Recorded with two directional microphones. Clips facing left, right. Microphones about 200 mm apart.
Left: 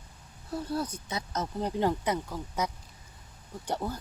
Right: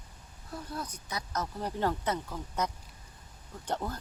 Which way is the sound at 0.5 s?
30° left (ahead or behind).